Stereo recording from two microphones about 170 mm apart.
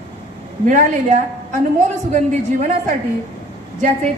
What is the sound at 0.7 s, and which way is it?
A woman's voice, 50° right (ahead or behind).